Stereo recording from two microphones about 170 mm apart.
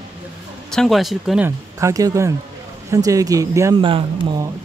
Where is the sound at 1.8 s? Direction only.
20° right (ahead or behind).